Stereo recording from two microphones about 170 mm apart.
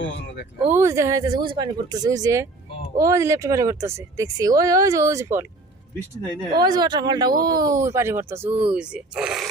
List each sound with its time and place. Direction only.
0.0 s speech: 90° left
0.6 s speech: 15° right (ahead or behind)
6.6 s speech: 25° right (ahead or behind); by 9.5 s 5° right (ahead or behind)